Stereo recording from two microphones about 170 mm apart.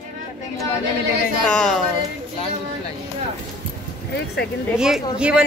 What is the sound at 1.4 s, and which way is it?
Speech, 5° left (ahead or behind).